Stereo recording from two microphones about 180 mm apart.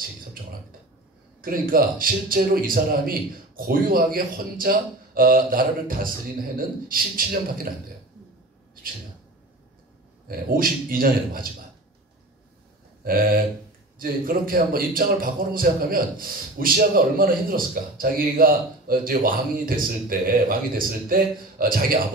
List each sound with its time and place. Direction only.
1.4 s a man's voice: 55° right (ahead or behind)
10.2 s a man's voice: 55° right (ahead or behind)
13.0 s a man's voice: 55° right (ahead or behind)